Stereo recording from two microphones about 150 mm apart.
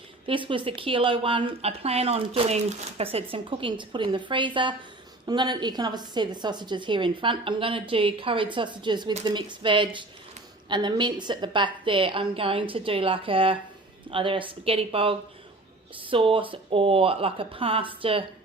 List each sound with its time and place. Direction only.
0.3 s speech: 35° right (ahead or behind)